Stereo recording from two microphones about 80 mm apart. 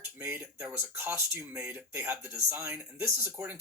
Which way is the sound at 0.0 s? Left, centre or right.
Right.